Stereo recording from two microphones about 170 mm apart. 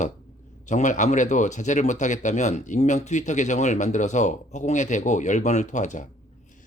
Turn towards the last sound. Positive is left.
turn(degrees=45)  # may be behind; listen again after turning